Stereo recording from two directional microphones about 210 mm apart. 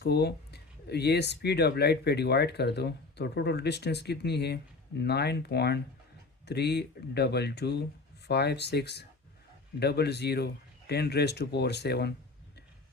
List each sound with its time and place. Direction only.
0.0 s speech: 50° left (ahead or behind)